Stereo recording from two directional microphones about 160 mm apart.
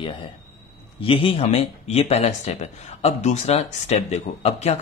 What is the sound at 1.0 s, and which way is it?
Speech, 35° left (ahead or behind).